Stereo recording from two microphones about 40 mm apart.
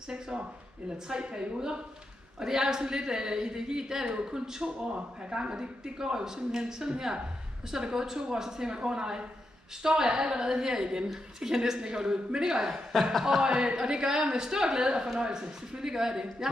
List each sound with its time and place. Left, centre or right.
0.8 s a man's voice: right